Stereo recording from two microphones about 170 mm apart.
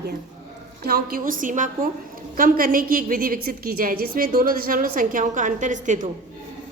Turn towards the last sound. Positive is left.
turn(degrees=-50)  # may be behind; listen again after turning